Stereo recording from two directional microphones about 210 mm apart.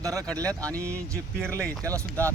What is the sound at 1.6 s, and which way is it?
Speech, 15° right (ahead or behind).